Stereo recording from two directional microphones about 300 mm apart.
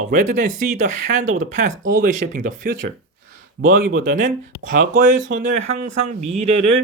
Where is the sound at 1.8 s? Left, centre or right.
Right.